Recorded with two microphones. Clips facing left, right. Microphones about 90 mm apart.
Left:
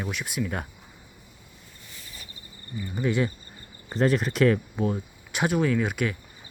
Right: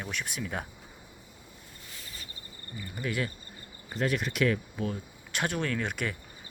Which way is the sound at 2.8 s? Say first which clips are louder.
Left 7 dB; 25° left (ahead or behind).